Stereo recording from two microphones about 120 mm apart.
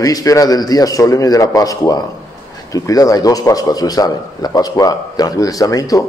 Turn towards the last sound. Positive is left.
turn(degrees=30)  # may be behind; listen again after turning